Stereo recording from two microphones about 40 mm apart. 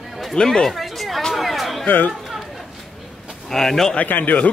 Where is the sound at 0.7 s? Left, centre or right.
Centre.